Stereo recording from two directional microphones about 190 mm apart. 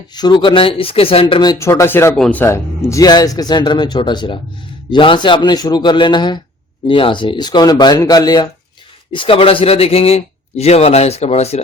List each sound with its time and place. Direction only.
0.1 s speech: 20° left (ahead or behind)